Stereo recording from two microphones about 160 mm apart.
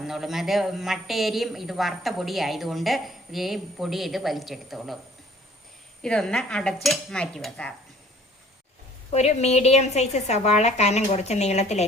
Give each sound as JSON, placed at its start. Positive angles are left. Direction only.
{"t": 0.0, "sound": "a woman's voice", "side_deg": 0}
{"t": 6.0, "sound": "a woman's voice", "side_deg": 5}
{"t": 9.1, "sound": "a woman's voice", "side_deg": 45}